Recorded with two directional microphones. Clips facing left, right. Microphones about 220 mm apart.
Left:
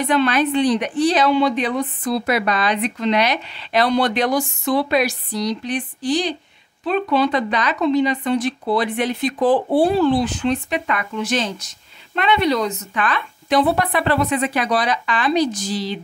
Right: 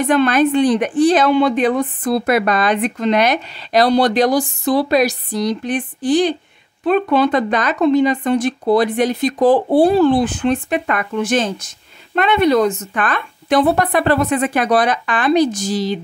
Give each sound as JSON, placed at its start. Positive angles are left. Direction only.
{"t": 0.0, "sound": "a woman's voice", "side_deg": -50}